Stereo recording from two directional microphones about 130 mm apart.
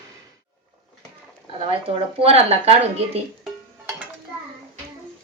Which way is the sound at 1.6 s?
50° right (ahead or behind).